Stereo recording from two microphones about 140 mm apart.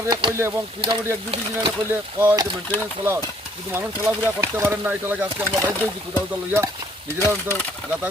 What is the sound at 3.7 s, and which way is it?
Speech, 15° right (ahead or behind).